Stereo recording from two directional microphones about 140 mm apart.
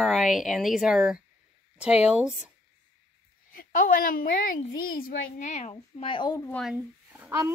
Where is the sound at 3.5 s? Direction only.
85° left; by 6.5 s 30° left (ahead or behind).